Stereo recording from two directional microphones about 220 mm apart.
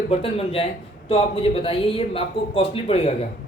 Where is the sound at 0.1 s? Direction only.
25° left (ahead or behind).